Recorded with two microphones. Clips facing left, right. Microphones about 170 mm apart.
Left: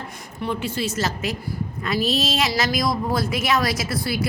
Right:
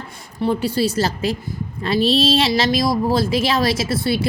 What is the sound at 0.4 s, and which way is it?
A woman's voice, 35° right (ahead or behind).